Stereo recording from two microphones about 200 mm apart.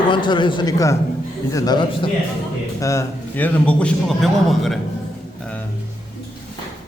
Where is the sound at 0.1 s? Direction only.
25° left (ahead or behind); by 4.8 s centre (ahead or behind).